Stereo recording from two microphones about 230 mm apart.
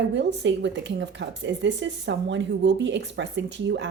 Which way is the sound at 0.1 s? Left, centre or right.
Right.